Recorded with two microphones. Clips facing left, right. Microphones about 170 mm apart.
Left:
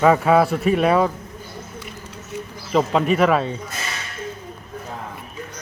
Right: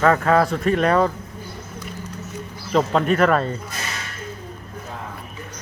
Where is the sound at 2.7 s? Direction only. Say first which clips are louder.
Even; 5° left (ahead or behind).